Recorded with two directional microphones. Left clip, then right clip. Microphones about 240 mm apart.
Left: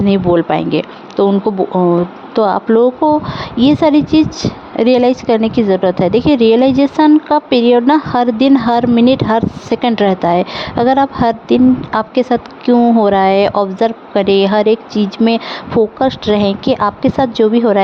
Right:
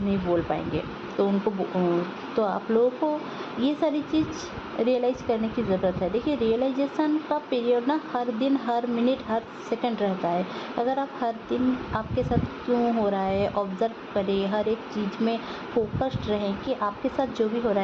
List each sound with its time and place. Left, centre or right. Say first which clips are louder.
0.1 s a woman's voice: left 13 dB; left
2.3 s a woman's voice: left 13 dB; left